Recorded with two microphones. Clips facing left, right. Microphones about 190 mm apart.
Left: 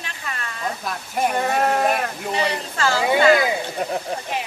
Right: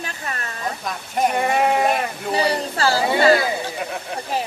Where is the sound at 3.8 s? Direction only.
40° left (ahead or behind).